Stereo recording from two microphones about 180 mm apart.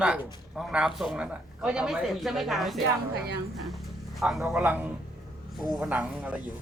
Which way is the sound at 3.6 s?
Centre (ahead or behind).